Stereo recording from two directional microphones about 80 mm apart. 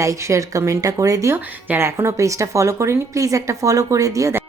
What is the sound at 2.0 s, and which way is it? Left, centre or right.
A woman's voice, right.